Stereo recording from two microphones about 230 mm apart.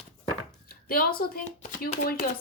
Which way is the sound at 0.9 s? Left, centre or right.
Left.